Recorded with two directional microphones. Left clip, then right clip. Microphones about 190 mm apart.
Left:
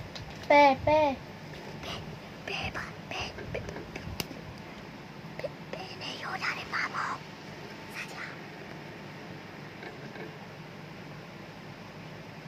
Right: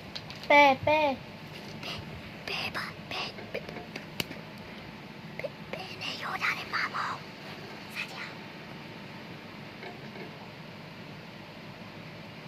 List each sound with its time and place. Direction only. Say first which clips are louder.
0.4 s speech: even; 40° right (ahead or behind)
2.5 s whispering: right 1 dB; 10° right (ahead or behind)
5.4 s whispering: right 1 dB; centre (ahead or behind)